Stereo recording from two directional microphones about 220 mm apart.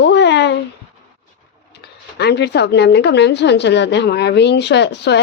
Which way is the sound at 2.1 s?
50° left (ahead or behind).